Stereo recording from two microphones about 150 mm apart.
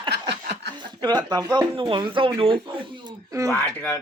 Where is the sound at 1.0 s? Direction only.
25° right (ahead or behind).